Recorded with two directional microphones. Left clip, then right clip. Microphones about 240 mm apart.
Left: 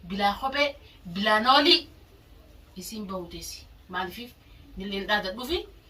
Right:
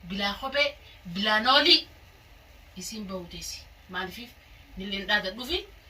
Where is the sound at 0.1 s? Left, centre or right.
Centre.